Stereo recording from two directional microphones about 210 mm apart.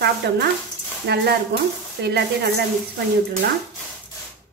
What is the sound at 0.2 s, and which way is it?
A woman's voice, 50° right (ahead or behind).